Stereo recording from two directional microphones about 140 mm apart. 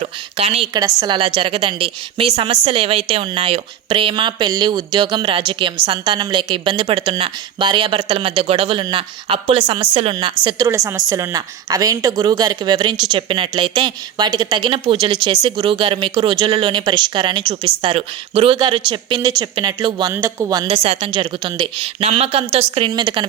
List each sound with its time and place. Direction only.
0.0 s a woman's voice: 45° right (ahead or behind)
0.9 s a woman's voice: 35° right (ahead or behind)
10.7 s a woman's voice: 20° right (ahead or behind)
20.1 s a woman's voice: 20° right (ahead or behind)
20.7 s a woman's voice: 45° right (ahead or behind)
21.8 s a woman's voice: 45° right (ahead or behind)